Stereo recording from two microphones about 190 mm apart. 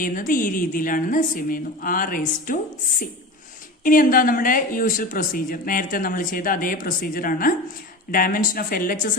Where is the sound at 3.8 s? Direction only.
45° left (ahead or behind).